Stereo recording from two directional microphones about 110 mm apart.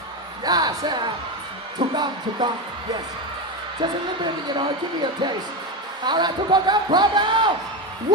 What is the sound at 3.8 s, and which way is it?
A woman's voice, 45° right (ahead or behind).